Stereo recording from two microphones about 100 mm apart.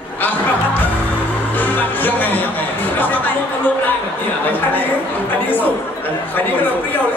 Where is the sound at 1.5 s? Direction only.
20° left (ahead or behind).